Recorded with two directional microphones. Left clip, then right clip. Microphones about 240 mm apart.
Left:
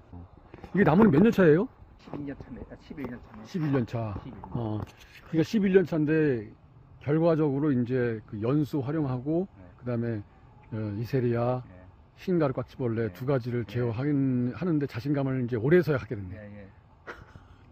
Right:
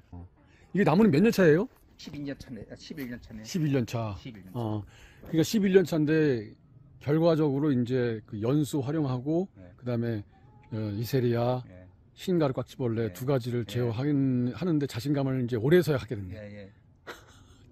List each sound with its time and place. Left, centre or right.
0.7 s speech: centre
2.0 s speech: right
3.4 s speech: centre
5.3 s speech: centre
16.3 s a man's voice: centre
17.0 s a sound: centre